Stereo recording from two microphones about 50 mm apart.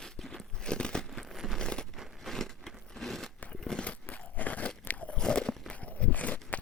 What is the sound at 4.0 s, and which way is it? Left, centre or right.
Crumpling, left.